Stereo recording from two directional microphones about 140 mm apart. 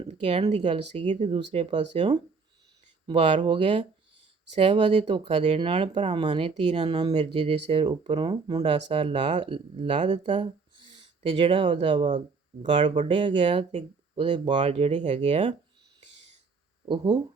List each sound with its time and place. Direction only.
0.0 s speech: 45° right (ahead or behind)
6.9 s speech: 35° right (ahead or behind)
7.2 s speech: 45° right (ahead or behind)
13.6 s speech: 55° right (ahead or behind)
14.3 s speech: 35° right (ahead or behind)
14.6 s speech: 50° right (ahead or behind)
16.8 s speech: 35° right (ahead or behind)